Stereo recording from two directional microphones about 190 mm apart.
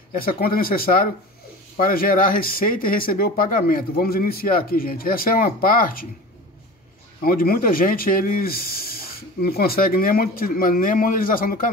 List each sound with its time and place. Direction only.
0.1 s speech: 50° left (ahead or behind)
7.2 s speech: 50° left (ahead or behind)